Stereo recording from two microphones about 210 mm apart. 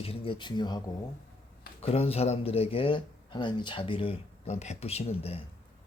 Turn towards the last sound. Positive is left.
turn(degrees=30)  # may be behind; listen again after turning